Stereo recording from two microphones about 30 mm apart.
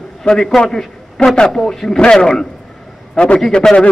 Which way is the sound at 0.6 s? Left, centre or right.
Centre.